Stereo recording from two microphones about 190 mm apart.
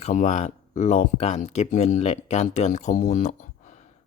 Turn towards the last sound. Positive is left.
turn(degrees=40)  # may be behind; listen again after turning